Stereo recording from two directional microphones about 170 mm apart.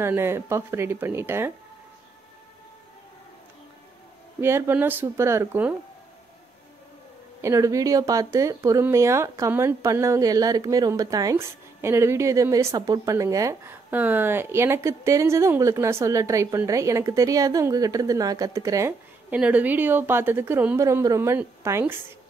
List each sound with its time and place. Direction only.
0.0 s a woman's voice: 15° right (ahead or behind)
4.4 s a woman's voice: 15° right (ahead or behind)
7.4 s a woman's voice: 20° right (ahead or behind)